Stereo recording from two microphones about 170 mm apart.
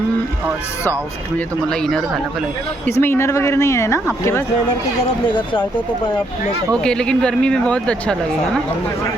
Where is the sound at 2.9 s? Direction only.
15° left (ahead or behind).